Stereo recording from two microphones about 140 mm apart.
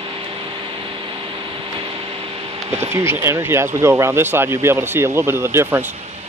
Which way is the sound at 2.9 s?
15° right (ahead or behind).